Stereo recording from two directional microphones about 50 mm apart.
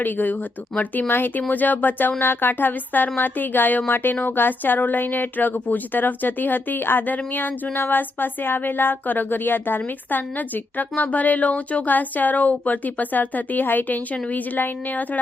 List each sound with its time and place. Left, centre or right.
0.0 s speech: left